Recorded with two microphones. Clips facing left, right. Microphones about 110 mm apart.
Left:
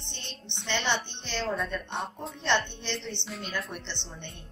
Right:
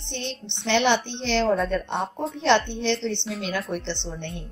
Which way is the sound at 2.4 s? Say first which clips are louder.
Right 8 dB; 90° right.